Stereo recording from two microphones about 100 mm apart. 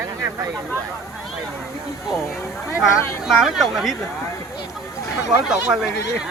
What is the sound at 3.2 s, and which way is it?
Speech, 5° right (ahead or behind).